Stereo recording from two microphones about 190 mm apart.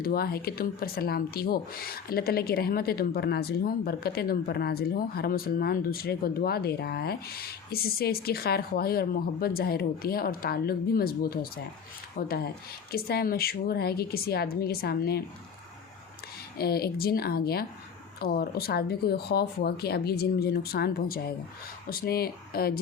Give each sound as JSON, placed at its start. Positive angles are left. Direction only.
{"t": 0.0, "sound": "speech", "side_deg": 50}
{"t": 16.6, "sound": "speech", "side_deg": 55}